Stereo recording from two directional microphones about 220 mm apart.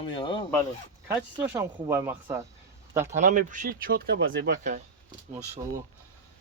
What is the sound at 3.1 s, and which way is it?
Speech, 35° right (ahead or behind).